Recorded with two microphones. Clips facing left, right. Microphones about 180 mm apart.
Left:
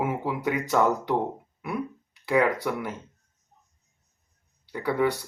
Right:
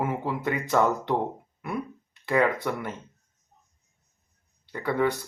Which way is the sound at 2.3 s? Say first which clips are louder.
Left 1 dB; 10° left (ahead or behind).